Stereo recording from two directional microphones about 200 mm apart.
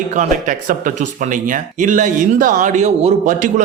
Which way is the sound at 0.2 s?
40° right (ahead or behind).